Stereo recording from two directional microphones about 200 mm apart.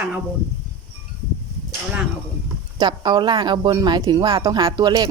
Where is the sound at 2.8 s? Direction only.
20° right (ahead or behind).